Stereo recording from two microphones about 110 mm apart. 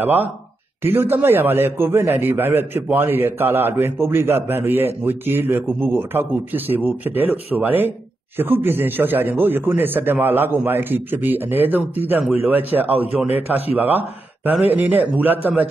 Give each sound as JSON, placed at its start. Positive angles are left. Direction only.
{"t": 0.0, "sound": "a man's voice", "side_deg": -15}